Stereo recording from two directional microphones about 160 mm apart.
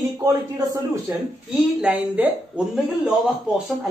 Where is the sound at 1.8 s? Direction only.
10° right (ahead or behind).